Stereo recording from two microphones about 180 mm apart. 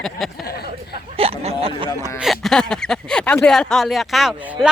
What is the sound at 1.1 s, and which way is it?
Speech, 35° right (ahead or behind).